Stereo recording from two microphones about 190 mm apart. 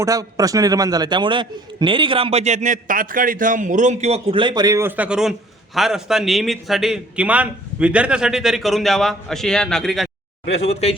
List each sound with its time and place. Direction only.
0.0 s a man's voice: 15° right (ahead or behind); by 10.1 s centre (ahead or behind)
10.7 s speech: 30° left (ahead or behind)